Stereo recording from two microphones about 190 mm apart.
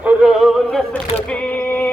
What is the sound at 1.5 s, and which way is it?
Music, 10° left (ahead or behind).